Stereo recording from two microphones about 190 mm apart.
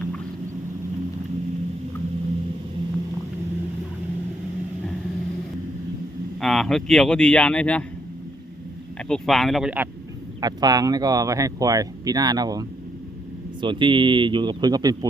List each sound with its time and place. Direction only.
6.4 s speech: centre (ahead or behind)
9.0 s speech: 5° left (ahead or behind)
10.4 s speech: 20° right (ahead or behind)